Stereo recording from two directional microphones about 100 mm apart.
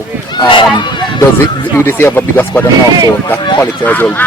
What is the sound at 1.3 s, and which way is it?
Speech, 25° left (ahead or behind).